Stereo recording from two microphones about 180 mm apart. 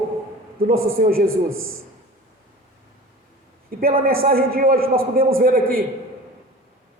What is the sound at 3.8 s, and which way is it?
A man's voice, 55° right (ahead or behind).